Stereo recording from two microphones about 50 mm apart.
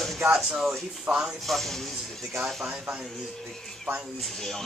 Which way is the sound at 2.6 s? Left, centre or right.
Right.